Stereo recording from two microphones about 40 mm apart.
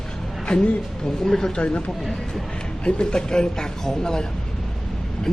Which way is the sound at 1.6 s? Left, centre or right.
Left.